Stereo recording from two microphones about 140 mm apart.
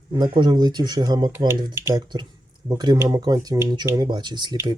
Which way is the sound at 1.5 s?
15° right (ahead or behind).